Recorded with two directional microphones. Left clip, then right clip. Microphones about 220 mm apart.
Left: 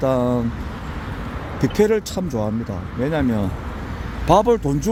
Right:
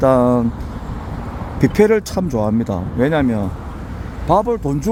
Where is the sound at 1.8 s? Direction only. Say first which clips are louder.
Right 4 dB; 15° right (ahead or behind).